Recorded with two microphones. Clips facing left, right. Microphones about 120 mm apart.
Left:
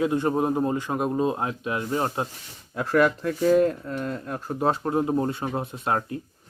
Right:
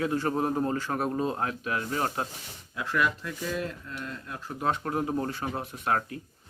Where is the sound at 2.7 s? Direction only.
40° left (ahead or behind).